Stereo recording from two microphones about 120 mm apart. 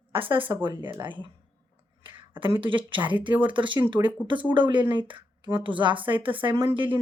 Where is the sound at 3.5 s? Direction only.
40° right (ahead or behind).